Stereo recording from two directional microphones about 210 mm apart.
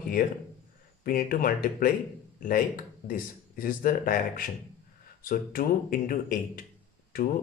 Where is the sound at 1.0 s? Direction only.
45° left (ahead or behind).